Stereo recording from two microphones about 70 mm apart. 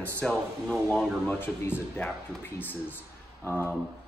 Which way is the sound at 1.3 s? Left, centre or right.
Left.